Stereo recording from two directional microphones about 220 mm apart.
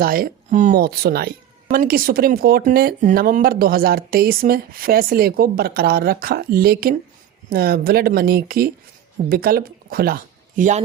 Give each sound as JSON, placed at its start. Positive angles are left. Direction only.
{"t": 0.0, "sound": "speech", "side_deg": -40}